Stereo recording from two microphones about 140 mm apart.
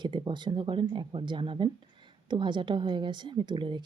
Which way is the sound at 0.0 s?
35° right (ahead or behind).